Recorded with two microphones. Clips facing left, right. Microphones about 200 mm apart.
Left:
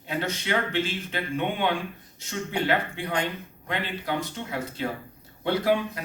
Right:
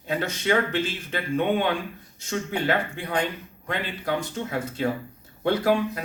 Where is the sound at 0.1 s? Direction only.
55° right (ahead or behind).